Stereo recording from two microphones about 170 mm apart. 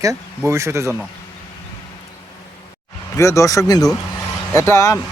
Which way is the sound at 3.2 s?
20° left (ahead or behind).